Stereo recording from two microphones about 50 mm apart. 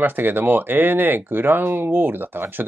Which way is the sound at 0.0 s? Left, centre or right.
Right.